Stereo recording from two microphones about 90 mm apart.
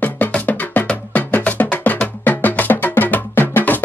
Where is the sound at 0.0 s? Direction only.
20° left (ahead or behind).